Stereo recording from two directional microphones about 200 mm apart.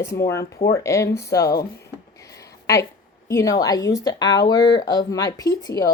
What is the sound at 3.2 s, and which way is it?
A woman's voice, 15° left (ahead or behind).